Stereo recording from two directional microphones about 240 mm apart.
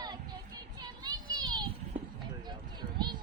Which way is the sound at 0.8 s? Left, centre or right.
Centre.